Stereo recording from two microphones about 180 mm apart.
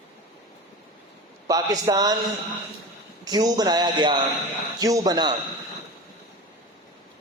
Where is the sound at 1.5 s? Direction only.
20° right (ahead or behind).